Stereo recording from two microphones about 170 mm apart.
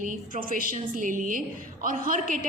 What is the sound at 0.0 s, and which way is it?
A woman's voice, 55° right (ahead or behind).